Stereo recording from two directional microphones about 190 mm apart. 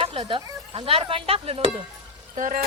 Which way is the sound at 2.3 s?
45° right (ahead or behind).